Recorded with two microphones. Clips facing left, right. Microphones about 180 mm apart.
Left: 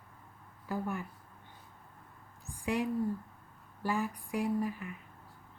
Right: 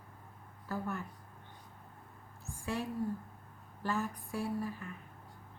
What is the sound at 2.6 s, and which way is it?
A woman's voice, 15° left (ahead or behind).